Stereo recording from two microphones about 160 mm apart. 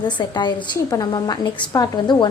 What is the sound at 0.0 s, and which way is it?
A woman's voice, 30° left (ahead or behind).